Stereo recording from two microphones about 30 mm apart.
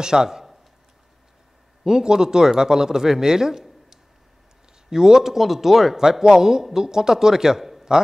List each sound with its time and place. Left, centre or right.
0.0 s speech: right
1.9 s speech: right
4.8 s a man's voice: right